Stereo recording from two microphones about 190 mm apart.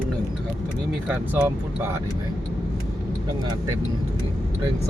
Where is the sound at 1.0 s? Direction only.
5° right (ahead or behind).